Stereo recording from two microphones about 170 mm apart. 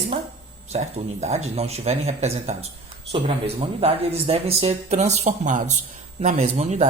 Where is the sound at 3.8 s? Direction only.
35° right (ahead or behind).